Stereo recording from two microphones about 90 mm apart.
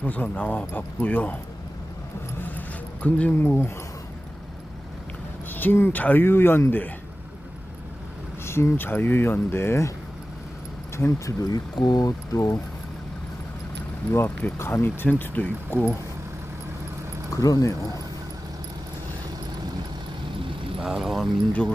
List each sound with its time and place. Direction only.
0.0 s speech: 20° left (ahead or behind)
2.4 s a sound: 15° left (ahead or behind)
5.5 s speech: 20° left (ahead or behind)
8.4 s speech: 30° left (ahead or behind)
10.9 s speech: 35° left (ahead or behind)
14.1 s speech: 30° left (ahead or behind)
17.3 s speech: 40° left (ahead or behind)
20.7 s speech: 5° right (ahead or behind)